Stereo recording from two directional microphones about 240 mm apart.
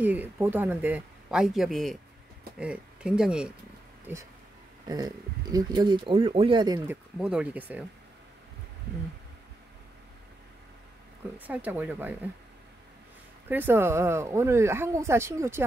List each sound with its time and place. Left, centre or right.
0.0 s speech: centre
7.2 s speech: centre
11.3 s speech: centre
13.5 s speech: centre